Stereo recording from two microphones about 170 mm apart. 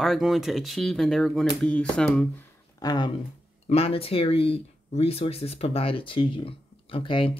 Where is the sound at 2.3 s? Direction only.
20° left (ahead or behind).